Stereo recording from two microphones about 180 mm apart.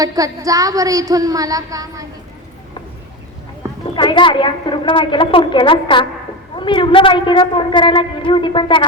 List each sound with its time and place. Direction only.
0.0 s a woman's voice: 20° right (ahead or behind)
3.9 s a woman's voice: 25° left (ahead or behind)